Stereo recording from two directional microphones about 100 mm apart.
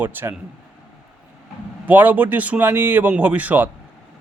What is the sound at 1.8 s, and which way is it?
A man's voice, 15° right (ahead or behind).